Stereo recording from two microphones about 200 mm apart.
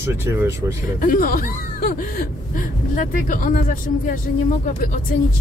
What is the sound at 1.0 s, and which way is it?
Speech, 45° left (ahead or behind).